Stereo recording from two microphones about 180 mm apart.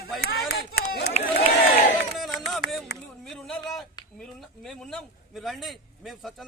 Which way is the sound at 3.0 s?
5° left (ahead or behind).